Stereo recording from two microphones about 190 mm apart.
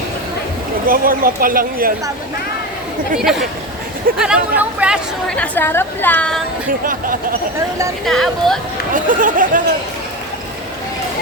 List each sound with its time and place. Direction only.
0.9 s speech: 50° right (ahead or behind)
3.2 s a woman's voice: centre (ahead or behind)
5.3 s a woman's voice: 10° left (ahead or behind)
6.8 s speech: 45° right (ahead or behind)
8.0 s a woman's voice: centre (ahead or behind)
8.9 s speech: 45° right (ahead or behind)